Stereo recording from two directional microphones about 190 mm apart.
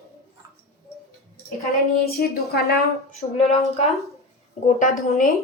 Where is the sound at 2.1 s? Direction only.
55° left (ahead or behind).